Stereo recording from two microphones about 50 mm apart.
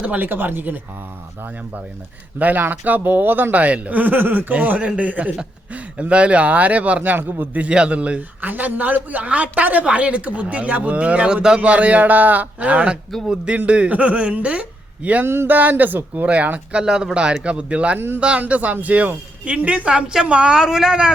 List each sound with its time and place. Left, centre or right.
0.0 s speech: right
0.3 s speech: right
2.4 s speech: right
4.5 s speech: right
7.5 s speech: right
13.2 s a man's voice: centre
13.7 s speech: right
15.2 s speech: right
15.4 s speech: right
16.2 s speech: right
16.8 s a man's voice: centre